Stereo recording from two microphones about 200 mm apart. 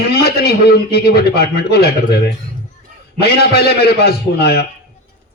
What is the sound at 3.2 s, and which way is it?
A man's voice, 50° left (ahead or behind).